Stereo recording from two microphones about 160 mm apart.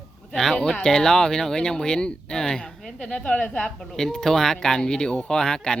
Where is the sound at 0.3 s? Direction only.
Centre (ahead or behind).